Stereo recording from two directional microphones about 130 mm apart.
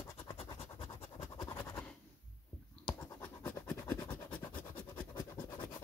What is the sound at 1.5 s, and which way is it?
Scratch, 25° left (ahead or behind).